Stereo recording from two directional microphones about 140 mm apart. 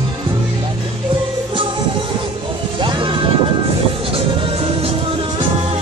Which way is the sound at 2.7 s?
35° right (ahead or behind).